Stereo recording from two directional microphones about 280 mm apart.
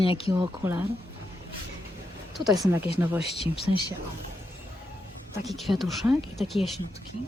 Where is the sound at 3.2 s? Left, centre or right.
Left.